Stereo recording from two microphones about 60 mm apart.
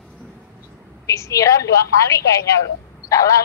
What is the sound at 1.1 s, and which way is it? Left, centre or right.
A woman's voice, left.